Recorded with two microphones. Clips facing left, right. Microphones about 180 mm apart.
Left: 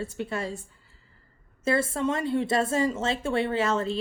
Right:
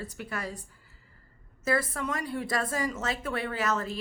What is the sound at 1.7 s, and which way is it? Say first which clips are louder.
A woman's voice: left 4 dB; 25° left (ahead or behind).